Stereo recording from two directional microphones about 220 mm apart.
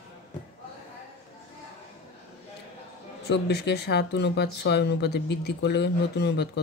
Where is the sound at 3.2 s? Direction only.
50° left (ahead or behind).